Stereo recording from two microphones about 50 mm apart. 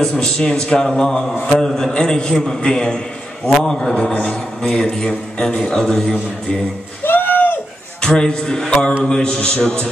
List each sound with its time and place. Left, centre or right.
0.0 s a man's voice: centre
3.9 s a man's voice: left
4.6 s a man's voice: centre
7.1 s a sound: left
8.0 s a man's voice: centre